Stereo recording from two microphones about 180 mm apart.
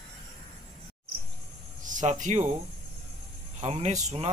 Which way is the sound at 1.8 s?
45° right (ahead or behind).